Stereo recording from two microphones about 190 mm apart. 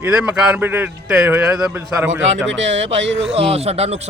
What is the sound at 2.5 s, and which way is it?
Speech, 75° right (ahead or behind).